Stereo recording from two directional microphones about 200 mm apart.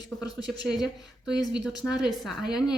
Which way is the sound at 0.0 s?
20° left (ahead or behind).